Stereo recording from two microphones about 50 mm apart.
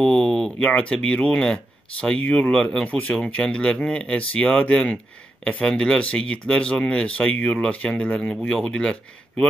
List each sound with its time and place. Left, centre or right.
0.0 s a sound: centre
0.6 s speech: left
5.7 s speech: centre